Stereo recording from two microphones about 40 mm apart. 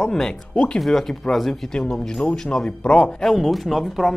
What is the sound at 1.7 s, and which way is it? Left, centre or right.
Speech, left.